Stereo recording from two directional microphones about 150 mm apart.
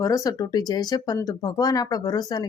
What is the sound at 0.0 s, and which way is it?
Speech, 25° left (ahead or behind).